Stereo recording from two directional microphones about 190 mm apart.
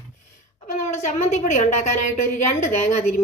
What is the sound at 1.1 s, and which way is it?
A woman's voice, 35° left (ahead or behind).